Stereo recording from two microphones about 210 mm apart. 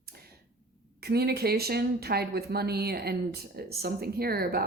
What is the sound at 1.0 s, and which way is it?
A woman's voice, 50° right (ahead or behind).